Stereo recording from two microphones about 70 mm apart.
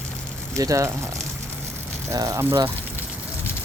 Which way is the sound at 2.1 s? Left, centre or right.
Right.